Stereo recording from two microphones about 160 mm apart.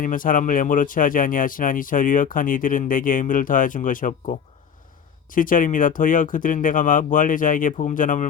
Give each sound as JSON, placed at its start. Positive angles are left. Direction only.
{"t": 0.0, "sound": "speech", "side_deg": 55}